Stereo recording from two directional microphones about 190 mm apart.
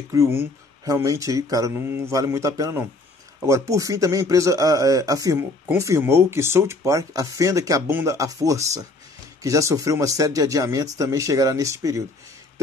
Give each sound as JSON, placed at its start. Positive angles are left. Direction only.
{"t": 0.1, "sound": "speech", "side_deg": -15}